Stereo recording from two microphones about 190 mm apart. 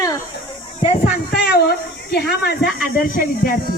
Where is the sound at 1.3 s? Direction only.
60° left (ahead or behind).